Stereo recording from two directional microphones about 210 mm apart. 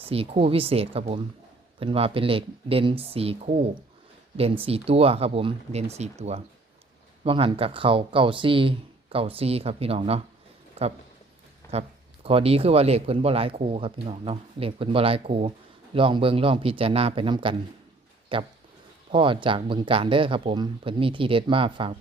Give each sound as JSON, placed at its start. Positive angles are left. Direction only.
{"t": 0.1, "sound": "speech", "side_deg": -25}